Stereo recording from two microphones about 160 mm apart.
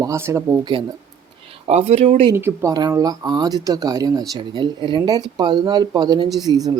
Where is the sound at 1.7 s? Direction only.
40° right (ahead or behind).